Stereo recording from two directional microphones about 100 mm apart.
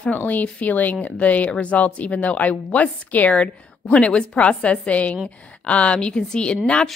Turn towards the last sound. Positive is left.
turn(degrees=10)  # may be behind; listen again after turning